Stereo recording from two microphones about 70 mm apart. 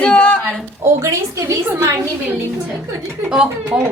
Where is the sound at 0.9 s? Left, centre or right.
Right.